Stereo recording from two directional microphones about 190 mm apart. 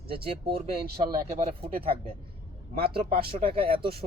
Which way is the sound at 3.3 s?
30° right (ahead or behind).